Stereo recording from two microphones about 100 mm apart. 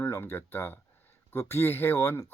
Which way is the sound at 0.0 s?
20° left (ahead or behind).